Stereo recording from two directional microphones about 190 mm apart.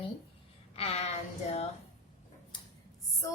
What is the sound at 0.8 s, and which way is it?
Speech, 35° left (ahead or behind).